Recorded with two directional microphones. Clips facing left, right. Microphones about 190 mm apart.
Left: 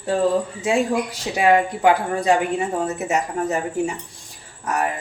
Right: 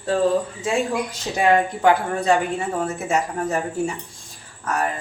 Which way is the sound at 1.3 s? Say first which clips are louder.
Left 1 dB; 10° left (ahead or behind).